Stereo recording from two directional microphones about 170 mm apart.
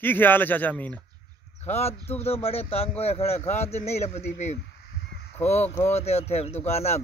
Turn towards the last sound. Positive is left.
turn(degrees=40)  # may be behind; listen again after turning